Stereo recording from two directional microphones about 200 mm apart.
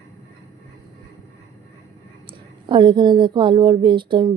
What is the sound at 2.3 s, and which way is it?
A woman's voice, 25° right (ahead or behind).